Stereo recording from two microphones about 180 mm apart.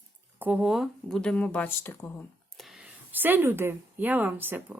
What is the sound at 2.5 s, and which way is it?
Speech, centre (ahead or behind).